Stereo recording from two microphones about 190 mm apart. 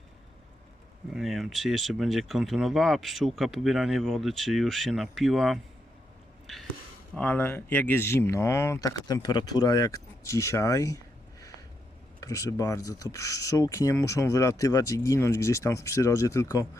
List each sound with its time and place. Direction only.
1.1 s speech: centre (ahead or behind)
7.2 s speech: 10° left (ahead or behind)